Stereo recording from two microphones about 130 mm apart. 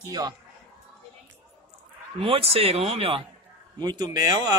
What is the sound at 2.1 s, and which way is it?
Speech, 50° right (ahead or behind).